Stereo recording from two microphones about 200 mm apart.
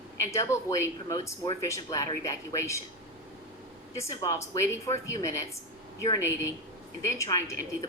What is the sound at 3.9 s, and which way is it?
Speech, 15° left (ahead or behind).